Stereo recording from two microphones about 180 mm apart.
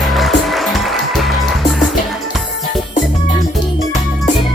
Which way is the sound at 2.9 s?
40° left (ahead or behind).